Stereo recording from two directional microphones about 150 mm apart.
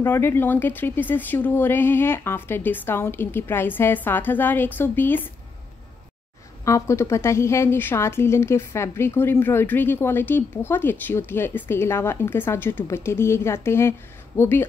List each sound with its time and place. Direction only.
0.0 s a woman's voice: 15° left (ahead or behind)
6.6 s a woman's voice: 20° left (ahead or behind)